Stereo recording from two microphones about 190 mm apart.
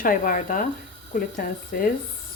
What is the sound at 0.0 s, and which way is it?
Speech, 45° left (ahead or behind).